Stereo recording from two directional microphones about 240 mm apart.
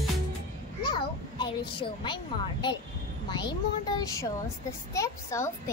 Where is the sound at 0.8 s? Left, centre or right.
Centre.